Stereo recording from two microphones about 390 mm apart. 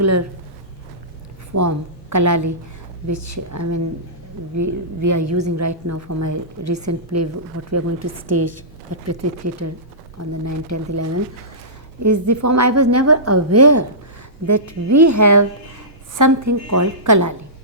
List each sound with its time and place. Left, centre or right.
0.0 s a woman's voice: right
1.5 s a woman's voice: right
10.2 s a woman's voice: right